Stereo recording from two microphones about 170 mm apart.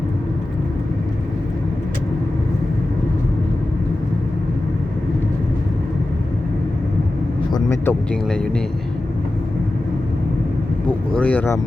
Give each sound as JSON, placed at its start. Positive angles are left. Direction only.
{"t": 7.5, "sound": "a sound", "side_deg": 15}
{"t": 8.1, "sound": "speech", "side_deg": 5}
{"t": 10.8, "sound": "vehicle", "side_deg": 5}